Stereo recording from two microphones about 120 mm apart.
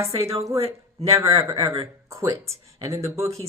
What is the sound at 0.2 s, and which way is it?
Speech, 55° right (ahead or behind).